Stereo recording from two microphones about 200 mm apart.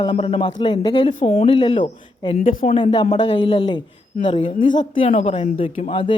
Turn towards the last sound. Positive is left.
turn(degrees=25)  # may be behind; listen again after turning